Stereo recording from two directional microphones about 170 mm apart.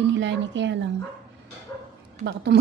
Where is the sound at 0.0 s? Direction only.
90° right.